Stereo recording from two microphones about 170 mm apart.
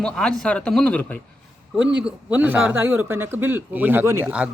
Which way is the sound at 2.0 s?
10° right (ahead or behind).